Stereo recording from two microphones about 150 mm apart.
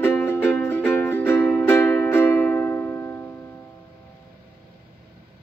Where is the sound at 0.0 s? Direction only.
15° left (ahead or behind).